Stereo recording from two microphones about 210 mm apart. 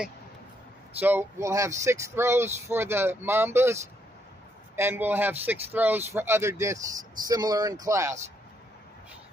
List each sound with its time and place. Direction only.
0.9 s speech: 10° right (ahead or behind)